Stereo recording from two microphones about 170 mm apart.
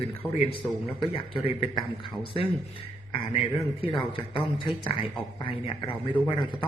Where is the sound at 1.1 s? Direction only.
35° left (ahead or behind).